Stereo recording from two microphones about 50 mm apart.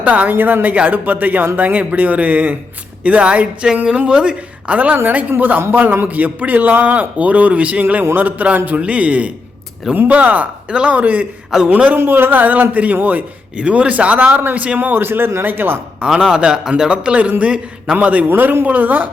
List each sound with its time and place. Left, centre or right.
0.0 s a man's voice: right
5.4 s a man's voice: right
10.7 s a man's voice: right
11.9 s a man's voice: right
14.9 s speech: right
16.1 s speech: centre
18.3 s a man's voice: right